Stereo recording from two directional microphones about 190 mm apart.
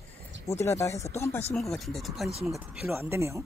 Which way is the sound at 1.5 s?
Centre (ahead or behind).